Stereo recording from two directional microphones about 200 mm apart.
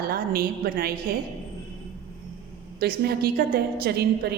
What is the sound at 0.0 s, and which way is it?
Speech, 50° right (ahead or behind).